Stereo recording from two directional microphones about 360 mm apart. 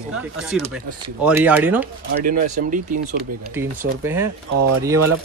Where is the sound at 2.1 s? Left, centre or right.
Right.